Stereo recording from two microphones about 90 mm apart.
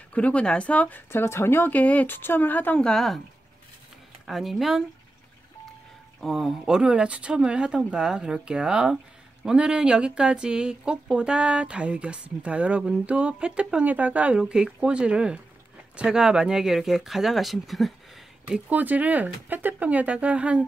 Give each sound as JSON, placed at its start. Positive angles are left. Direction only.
{"t": 0.1, "sound": "speech", "side_deg": 15}
{"t": 2.9, "sound": "speech", "side_deg": 0}
{"t": 4.3, "sound": "speech", "side_deg": 0}
{"t": 6.2, "sound": "speech", "side_deg": 0}
{"t": 18.7, "sound": "speech", "side_deg": -20}